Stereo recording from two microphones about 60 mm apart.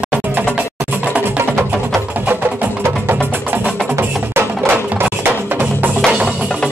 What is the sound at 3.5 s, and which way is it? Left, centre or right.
Music, right.